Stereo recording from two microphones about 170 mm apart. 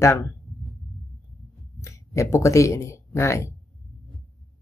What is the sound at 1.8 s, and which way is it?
Speech, 15° left (ahead or behind).